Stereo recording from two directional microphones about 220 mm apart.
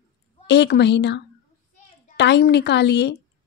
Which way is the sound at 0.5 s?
50° left (ahead or behind).